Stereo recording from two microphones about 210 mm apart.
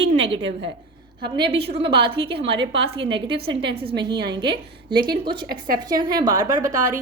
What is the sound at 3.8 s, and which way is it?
Speech, 25° right (ahead or behind).